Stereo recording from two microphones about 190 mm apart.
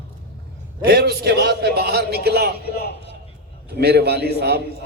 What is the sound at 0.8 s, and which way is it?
A man's voice, 55° right (ahead or behind).